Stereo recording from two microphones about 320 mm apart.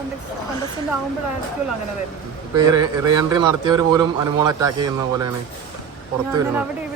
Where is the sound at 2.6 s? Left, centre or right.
Centre.